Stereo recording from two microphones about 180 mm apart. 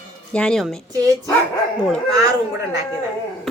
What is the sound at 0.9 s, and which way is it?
Speech, 20° right (ahead or behind).